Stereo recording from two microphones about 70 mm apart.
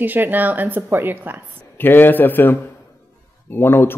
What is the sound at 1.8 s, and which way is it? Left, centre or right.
A man's voice, left.